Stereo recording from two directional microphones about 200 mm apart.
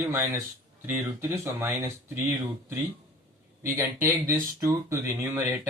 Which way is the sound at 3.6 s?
15° right (ahead or behind).